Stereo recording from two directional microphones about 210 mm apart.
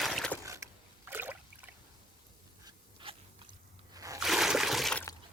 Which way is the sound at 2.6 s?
25° right (ahead or behind).